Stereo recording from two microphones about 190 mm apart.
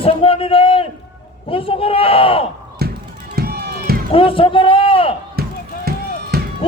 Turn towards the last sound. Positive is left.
turn(degrees=-55)  # may be behind; listen again after turning